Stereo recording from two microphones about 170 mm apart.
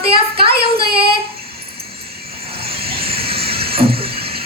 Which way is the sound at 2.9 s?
35° right (ahead or behind).